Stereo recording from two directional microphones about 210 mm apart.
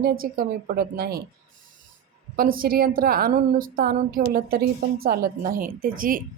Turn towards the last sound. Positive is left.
turn(degrees=-40)  # may be behind; listen again after turning